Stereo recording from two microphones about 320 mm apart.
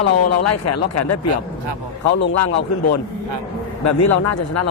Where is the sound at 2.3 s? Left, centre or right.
Left.